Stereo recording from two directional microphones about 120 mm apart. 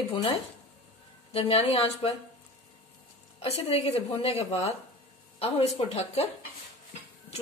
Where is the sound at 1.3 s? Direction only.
55° left (ahead or behind).